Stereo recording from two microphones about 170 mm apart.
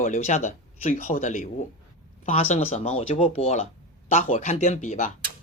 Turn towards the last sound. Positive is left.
turn(degrees=45)  # may be behind; listen again after turning